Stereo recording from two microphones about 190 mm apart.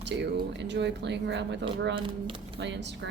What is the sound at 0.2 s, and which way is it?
Speech, 65° right (ahead or behind).